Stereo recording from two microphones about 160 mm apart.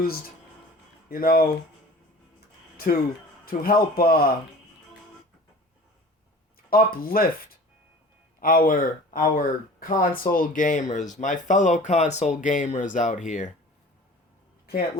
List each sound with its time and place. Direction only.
1.1 s speech: 65° left (ahead or behind)
2.7 s a man's voice: 70° left (ahead or behind)
6.7 s speech: 65° left (ahead or behind)
8.4 s speech: 60° left (ahead or behind)